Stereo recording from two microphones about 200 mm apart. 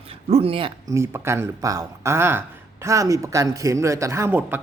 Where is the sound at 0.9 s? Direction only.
15° right (ahead or behind).